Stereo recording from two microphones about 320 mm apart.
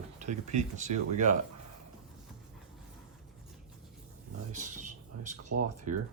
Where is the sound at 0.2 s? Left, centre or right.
Right.